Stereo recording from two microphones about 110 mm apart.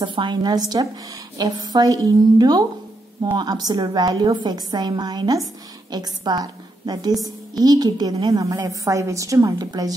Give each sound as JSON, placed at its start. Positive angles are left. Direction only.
{"t": 0.0, "sound": "a woman's voice", "side_deg": -45}